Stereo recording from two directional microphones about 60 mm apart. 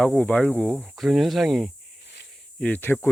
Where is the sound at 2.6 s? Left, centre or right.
Left.